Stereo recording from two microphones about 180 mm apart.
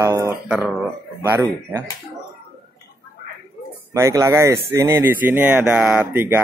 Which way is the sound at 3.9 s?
15° right (ahead or behind).